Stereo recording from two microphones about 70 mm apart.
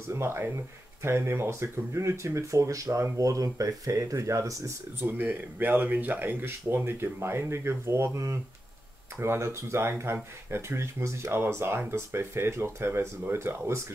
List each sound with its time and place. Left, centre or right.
0.1 s speech: right
5.0 s speech: right